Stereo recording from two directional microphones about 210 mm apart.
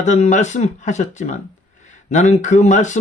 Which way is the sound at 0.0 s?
35° left (ahead or behind).